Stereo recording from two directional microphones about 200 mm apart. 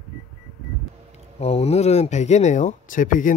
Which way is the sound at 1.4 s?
30° left (ahead or behind).